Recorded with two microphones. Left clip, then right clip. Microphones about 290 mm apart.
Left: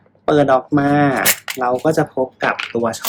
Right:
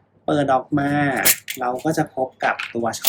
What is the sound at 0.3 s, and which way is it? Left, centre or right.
Speech, centre.